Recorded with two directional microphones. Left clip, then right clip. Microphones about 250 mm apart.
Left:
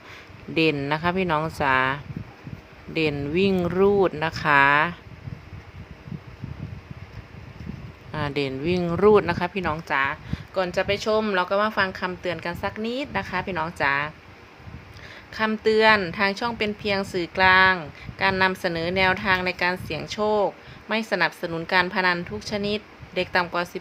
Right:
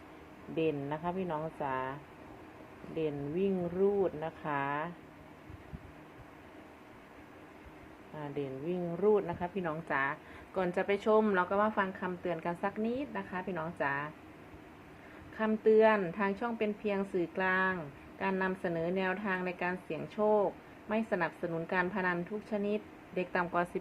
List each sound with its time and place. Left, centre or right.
0.5 s speech: left
8.1 s speech: left
9.9 s a woman's voice: centre
15.4 s a woman's voice: centre